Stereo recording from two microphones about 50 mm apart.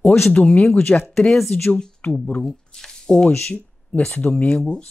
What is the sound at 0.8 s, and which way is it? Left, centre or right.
Speech, left.